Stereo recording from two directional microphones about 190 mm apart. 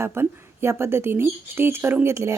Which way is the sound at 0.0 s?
10° right (ahead or behind).